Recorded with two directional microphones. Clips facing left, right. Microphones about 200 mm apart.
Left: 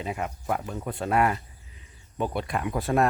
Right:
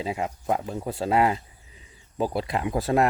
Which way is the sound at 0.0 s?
25° right (ahead or behind).